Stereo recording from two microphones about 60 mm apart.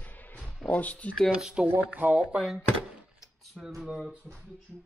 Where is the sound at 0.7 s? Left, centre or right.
Left.